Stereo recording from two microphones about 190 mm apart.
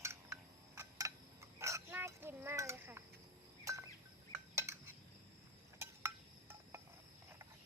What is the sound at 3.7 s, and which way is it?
Bird, 15° right (ahead or behind).